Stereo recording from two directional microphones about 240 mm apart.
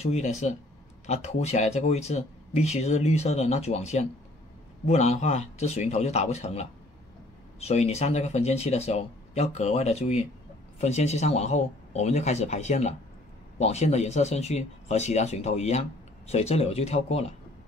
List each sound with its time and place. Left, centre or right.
0.0 s speech: left